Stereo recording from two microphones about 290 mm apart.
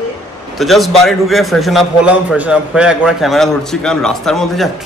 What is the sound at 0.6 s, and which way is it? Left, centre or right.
A man's voice, centre.